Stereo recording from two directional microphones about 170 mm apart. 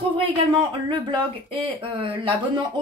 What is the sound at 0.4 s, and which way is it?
Speech, 30° right (ahead or behind).